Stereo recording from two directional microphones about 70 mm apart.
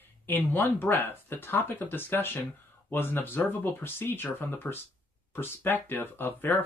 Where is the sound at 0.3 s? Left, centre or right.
Left.